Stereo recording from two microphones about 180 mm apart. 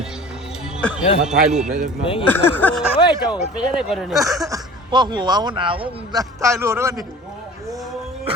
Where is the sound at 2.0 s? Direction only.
30° left (ahead or behind).